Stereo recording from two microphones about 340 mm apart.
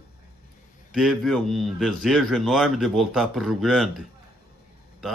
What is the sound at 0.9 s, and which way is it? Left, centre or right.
Speech, centre.